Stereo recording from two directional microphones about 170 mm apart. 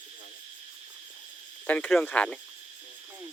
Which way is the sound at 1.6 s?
10° left (ahead or behind).